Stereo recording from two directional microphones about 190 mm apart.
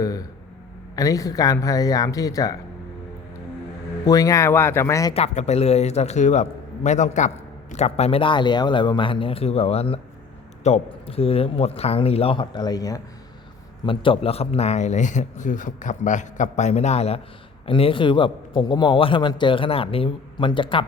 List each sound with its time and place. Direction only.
0.0 s a sound: 20° left (ahead or behind)
0.9 s speech: 20° left (ahead or behind)
4.0 s speech: 20° left (ahead or behind)
5.1 s a man's voice: 35° left (ahead or behind)